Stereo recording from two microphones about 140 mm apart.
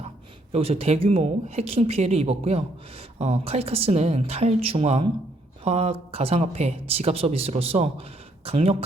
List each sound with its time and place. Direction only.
0.5 s speech: 45° right (ahead or behind)